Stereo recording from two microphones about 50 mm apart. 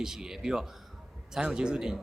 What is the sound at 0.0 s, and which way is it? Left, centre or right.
A man's voice, centre.